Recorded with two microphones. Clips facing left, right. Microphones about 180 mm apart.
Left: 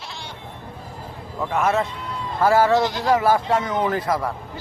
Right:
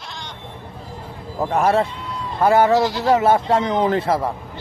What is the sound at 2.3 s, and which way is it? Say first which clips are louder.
A man's voice: right 2 dB; 20° right (ahead or behind).